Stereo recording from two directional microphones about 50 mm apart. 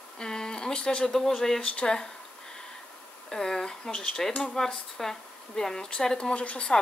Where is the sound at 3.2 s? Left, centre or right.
Centre.